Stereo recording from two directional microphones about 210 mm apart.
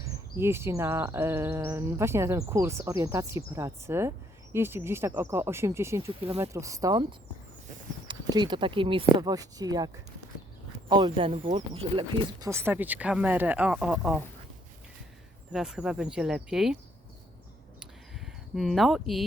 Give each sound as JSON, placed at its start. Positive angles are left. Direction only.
{"t": 0.0, "sound": "speech", "side_deg": -10}
{"t": 8.0, "sound": "speech", "side_deg": -20}
{"t": 12.5, "sound": "speech", "side_deg": -10}
{"t": 15.5, "sound": "speech", "side_deg": -5}
{"t": 18.5, "sound": "speech", "side_deg": 0}